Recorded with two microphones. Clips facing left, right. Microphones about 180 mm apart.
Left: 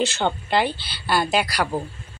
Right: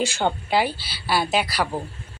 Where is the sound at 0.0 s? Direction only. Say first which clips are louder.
Even; 10° right (ahead or behind).